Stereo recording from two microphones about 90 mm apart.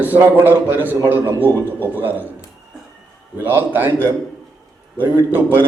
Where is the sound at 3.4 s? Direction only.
20° right (ahead or behind).